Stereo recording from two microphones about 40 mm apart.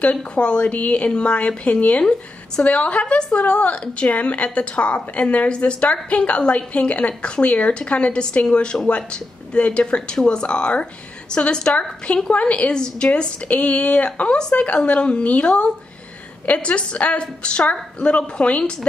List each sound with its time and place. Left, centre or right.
0.0 s a woman's voice: left